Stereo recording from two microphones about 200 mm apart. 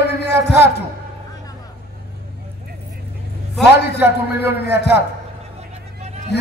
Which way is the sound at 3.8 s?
55° left (ahead or behind).